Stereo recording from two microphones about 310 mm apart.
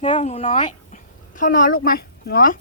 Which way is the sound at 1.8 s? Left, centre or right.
Left.